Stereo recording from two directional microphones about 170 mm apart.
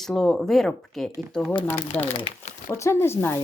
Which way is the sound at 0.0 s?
5° left (ahead or behind).